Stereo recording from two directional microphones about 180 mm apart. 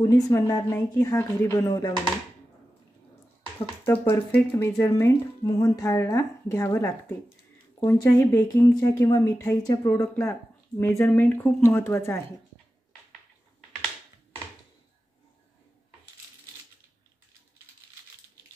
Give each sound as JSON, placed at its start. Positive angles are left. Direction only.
{"t": 0.0, "sound": "a woman's voice", "side_deg": 15}
{"t": 3.8, "sound": "speech", "side_deg": 10}